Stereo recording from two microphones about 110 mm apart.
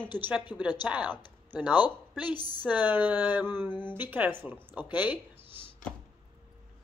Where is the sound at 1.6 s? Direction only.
40° left (ahead or behind).